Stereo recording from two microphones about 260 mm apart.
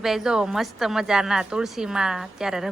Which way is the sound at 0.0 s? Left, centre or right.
Centre.